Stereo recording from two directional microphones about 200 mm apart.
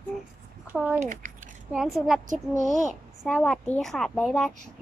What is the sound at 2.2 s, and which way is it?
Speech, 40° right (ahead or behind).